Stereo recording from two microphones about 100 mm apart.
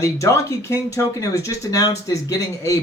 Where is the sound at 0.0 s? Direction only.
30° left (ahead or behind).